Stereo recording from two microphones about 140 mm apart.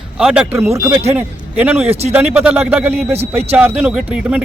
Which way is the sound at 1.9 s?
50° right (ahead or behind).